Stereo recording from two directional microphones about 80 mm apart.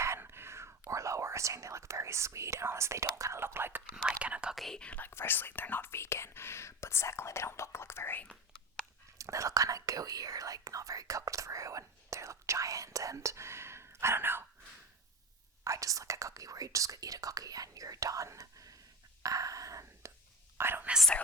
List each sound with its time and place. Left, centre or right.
0.0 s speech: right
4.2 s speech: centre
4.5 s speech: centre
5.0 s speech: left
9.1 s speech: right
15.6 s speech: right
19.2 s whispering: right
20.6 s whispering: right